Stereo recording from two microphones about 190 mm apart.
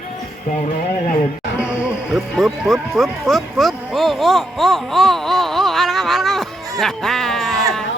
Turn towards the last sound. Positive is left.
turn(degrees=0)  # may be behind; listen again after turning